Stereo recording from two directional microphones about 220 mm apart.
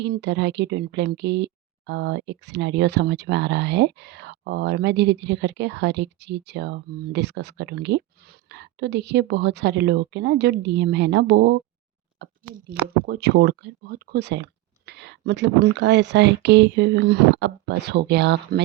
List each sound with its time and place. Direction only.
0.0 s speech: 50° right (ahead or behind)
12.2 s a sound: 50° right (ahead or behind)
13.1 s speech: 50° right (ahead or behind)